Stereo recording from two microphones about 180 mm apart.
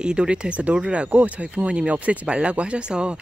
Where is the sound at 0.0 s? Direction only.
5° right (ahead or behind).